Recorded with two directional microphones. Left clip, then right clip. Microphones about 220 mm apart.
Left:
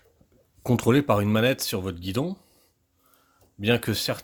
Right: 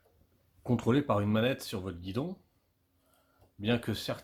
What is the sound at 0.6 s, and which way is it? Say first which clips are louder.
Speech: left 8 dB; 35° left (ahead or behind).